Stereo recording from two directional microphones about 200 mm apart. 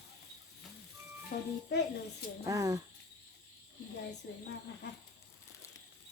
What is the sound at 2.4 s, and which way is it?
Speech, 15° right (ahead or behind).